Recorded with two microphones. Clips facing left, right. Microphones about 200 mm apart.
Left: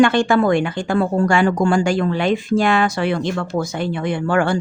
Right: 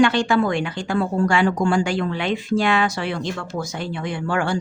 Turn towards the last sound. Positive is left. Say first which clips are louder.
# left 5 dB
turn(degrees=60)  # may be behind; listen again after turning